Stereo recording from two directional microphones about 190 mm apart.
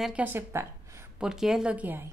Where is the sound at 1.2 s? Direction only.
Centre (ahead or behind).